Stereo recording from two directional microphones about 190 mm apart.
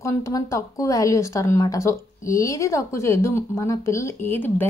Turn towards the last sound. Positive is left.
turn(degrees=10)  # may be behind; listen again after turning